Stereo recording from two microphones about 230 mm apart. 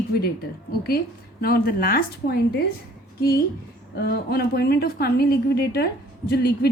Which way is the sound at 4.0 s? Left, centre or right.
Left.